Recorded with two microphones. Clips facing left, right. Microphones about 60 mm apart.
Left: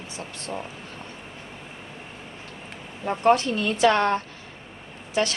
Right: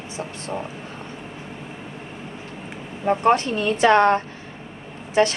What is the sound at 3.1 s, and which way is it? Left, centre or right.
A woman's voice, right.